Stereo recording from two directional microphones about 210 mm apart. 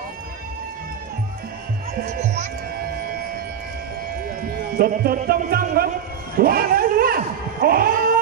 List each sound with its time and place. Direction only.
2.1 s music: 35° right (ahead or behind)
4.4 s speech: 45° right (ahead or behind)
6.3 s dog: 45° right (ahead or behind)
7.6 s cat: 45° right (ahead or behind)